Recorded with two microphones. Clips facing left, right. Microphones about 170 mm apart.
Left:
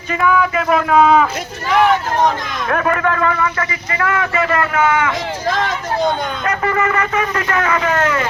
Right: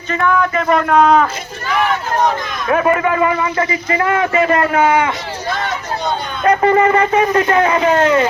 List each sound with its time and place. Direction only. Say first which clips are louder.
0.1 s speech: even; 5° left (ahead or behind)
2.6 s a man's voice: right 3 dB; 5° right (ahead or behind); by 5.1 s 30° right (ahead or behind)
6.4 s a man's voice: right 9 dB; 30° right (ahead or behind)